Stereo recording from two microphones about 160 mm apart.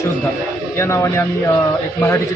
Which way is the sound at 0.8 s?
15° left (ahead or behind).